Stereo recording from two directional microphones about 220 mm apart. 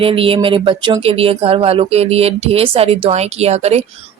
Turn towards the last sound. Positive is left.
turn(degrees=-30)  # may be behind; listen again after turning